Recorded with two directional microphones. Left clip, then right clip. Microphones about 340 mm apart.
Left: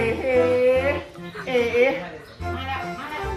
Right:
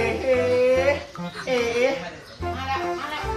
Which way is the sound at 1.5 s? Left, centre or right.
Centre.